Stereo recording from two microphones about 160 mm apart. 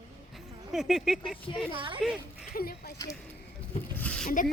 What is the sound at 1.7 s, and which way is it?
Speech, 30° right (ahead or behind).